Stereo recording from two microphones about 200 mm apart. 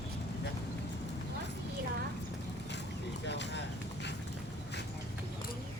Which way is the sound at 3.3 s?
60° left (ahead or behind).